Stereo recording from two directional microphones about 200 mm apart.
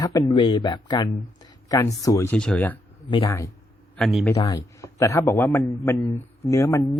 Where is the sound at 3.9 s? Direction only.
Centre (ahead or behind).